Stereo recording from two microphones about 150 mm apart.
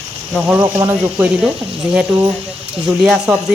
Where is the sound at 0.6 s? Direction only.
20° right (ahead or behind).